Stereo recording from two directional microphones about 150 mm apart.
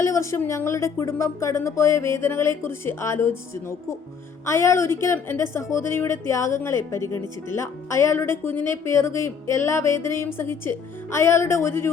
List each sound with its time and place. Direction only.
0.0 s a woman's voice: 20° left (ahead or behind)